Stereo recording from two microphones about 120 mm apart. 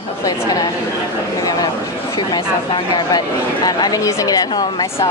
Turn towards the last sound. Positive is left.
turn(degrees=30)  # may be behind; listen again after turning